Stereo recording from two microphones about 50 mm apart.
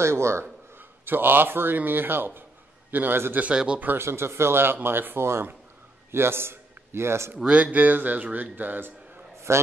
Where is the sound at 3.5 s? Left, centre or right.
Centre.